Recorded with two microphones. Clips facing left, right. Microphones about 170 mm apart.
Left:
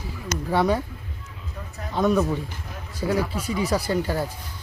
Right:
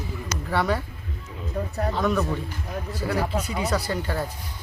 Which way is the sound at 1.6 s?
50° right (ahead or behind).